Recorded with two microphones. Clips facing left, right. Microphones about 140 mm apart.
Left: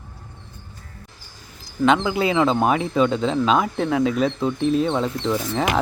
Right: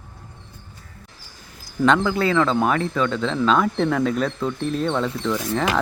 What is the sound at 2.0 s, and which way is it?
Speech, 15° left (ahead or behind).